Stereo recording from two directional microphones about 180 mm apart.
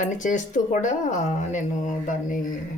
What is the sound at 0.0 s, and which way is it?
Speech, 45° left (ahead or behind).